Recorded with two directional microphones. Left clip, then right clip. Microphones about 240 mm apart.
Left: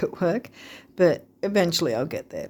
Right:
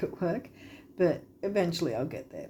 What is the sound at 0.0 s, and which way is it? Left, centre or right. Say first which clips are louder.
Speech: left 7 dB; left.